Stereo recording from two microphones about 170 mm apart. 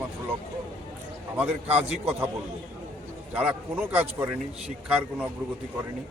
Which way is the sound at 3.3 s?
10° right (ahead or behind).